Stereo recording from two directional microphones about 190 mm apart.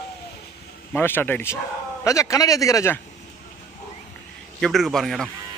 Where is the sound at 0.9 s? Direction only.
10° left (ahead or behind).